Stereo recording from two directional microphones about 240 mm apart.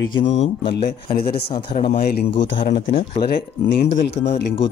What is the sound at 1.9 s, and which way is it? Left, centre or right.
Speech, left.